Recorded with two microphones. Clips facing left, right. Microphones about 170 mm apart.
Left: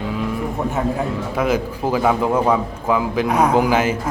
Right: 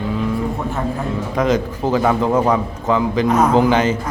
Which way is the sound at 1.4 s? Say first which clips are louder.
Right 2 dB; 10° left (ahead or behind).